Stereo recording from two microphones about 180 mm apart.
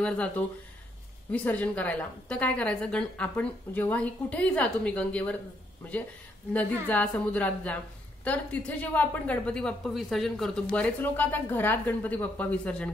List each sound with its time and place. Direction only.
0.0 s a woman's voice: 5° left (ahead or behind)
6.5 s a woman's voice: 5° left (ahead or behind)